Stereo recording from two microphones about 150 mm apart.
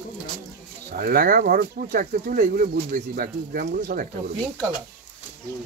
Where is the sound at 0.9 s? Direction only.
85° right; by 4.0 s 70° right (ahead or behind).